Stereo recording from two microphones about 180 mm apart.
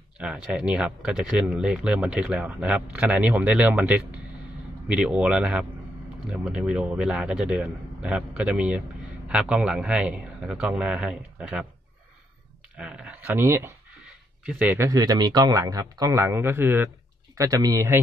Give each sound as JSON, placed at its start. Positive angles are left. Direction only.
{"t": 0.2, "sound": "a man's voice", "side_deg": -5}
{"t": 12.7, "sound": "speech", "side_deg": -5}
{"t": 14.0, "sound": "a sound", "side_deg": -5}
{"t": 14.9, "sound": "speech", "side_deg": -20}